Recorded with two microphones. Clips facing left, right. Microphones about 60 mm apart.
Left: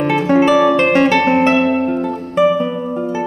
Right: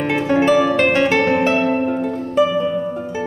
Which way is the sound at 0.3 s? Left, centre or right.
Left.